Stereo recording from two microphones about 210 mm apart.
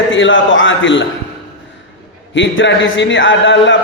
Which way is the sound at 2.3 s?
65° left (ahead or behind).